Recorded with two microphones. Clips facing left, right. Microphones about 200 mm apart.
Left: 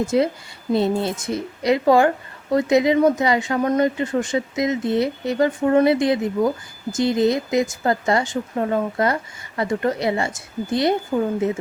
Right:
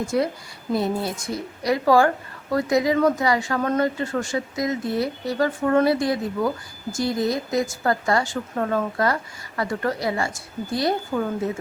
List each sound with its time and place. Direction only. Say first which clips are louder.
0.1 s speech: left 4 dB; 25° left (ahead or behind)